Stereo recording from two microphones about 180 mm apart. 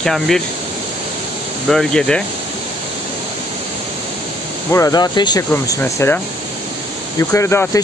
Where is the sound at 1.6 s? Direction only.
Centre (ahead or behind).